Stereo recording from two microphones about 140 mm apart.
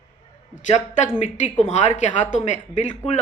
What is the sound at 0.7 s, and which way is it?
A woman's voice, 55° left (ahead or behind).